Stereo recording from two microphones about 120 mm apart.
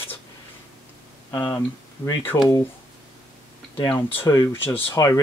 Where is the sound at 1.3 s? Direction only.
25° left (ahead or behind).